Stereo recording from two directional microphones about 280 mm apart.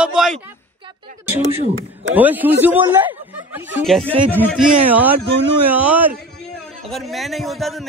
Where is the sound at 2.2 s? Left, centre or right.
Centre.